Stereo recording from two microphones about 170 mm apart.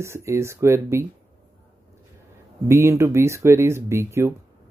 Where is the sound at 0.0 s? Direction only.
15° right (ahead or behind).